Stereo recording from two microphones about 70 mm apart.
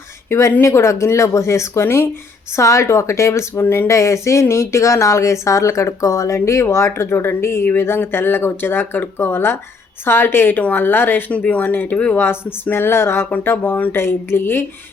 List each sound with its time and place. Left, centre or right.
0.3 s speech: left
11.3 s speech: centre
12.1 s speech: left